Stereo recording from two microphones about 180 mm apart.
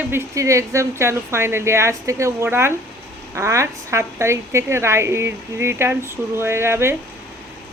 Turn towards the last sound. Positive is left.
turn(degrees=-15)  # may be behind; listen again after turning